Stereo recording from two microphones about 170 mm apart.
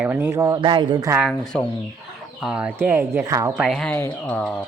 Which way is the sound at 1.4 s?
5° left (ahead or behind).